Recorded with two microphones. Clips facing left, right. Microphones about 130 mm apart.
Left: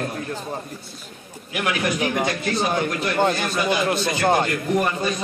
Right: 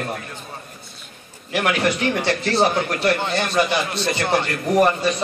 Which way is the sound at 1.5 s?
70° right (ahead or behind).